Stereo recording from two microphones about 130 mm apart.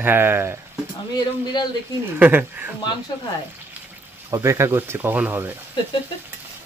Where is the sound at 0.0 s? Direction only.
15° right (ahead or behind).